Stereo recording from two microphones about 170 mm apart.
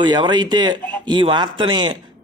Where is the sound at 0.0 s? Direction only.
25° right (ahead or behind).